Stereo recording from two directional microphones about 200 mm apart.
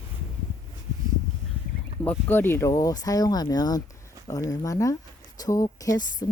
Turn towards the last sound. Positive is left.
turn(degrees=20)  # may be behind; listen again after turning